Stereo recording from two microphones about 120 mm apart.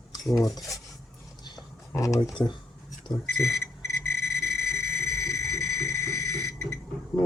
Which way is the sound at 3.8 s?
25° left (ahead or behind).